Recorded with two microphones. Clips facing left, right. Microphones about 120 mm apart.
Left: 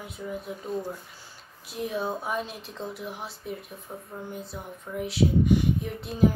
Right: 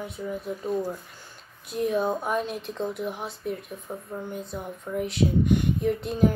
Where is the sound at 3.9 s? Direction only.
15° right (ahead or behind).